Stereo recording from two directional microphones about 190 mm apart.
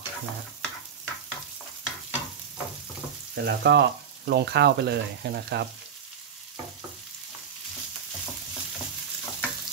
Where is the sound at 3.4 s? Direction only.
60° right (ahead or behind).